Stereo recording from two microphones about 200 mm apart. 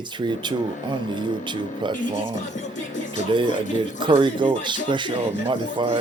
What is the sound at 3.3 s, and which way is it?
Speech, 25° right (ahead or behind).